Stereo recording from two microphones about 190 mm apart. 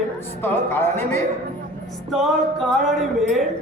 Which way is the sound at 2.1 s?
Centre (ahead or behind).